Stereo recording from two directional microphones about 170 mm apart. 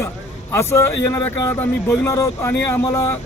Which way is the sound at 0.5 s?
15° left (ahead or behind).